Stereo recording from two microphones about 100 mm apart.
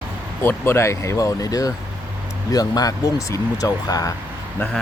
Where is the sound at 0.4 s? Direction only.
25° left (ahead or behind).